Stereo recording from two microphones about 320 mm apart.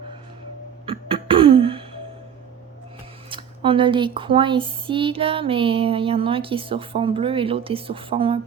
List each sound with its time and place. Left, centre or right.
0.9 s cough: centre
3.2 s speech: centre